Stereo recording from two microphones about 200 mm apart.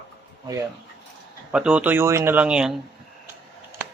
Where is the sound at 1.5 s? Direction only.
5° right (ahead or behind).